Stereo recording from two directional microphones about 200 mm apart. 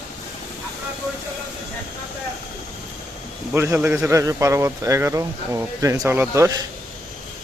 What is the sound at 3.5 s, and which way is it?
Speech, 10° right (ahead or behind).